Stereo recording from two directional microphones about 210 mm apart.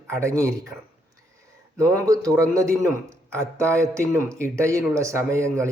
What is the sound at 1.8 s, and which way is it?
Speech, 15° right (ahead or behind).